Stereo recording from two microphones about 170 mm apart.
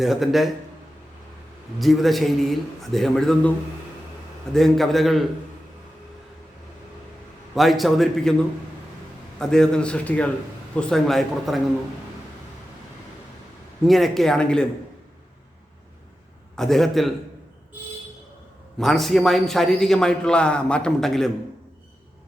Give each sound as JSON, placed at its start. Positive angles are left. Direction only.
{"t": 0.0, "sound": "a man's voice", "side_deg": 0}
{"t": 1.8, "sound": "a man's voice", "side_deg": 0}
{"t": 4.5, "sound": "a man's voice", "side_deg": 0}
{"t": 7.5, "sound": "a man's voice", "side_deg": 0}
{"t": 9.4, "sound": "a man's voice", "side_deg": 5}
{"t": 13.8, "sound": "a man's voice", "side_deg": 0}
{"t": 16.6, "sound": "a man's voice", "side_deg": 0}
{"t": 18.8, "sound": "a man's voice", "side_deg": 0}